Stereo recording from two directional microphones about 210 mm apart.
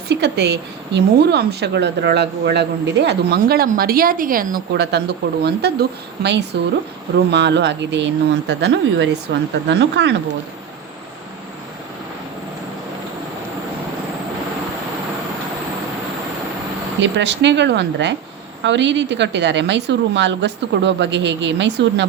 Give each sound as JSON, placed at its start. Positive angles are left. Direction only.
{"t": 0.1, "sound": "a woman's voice", "side_deg": -50}
{"t": 17.0, "sound": "a woman's voice", "side_deg": -55}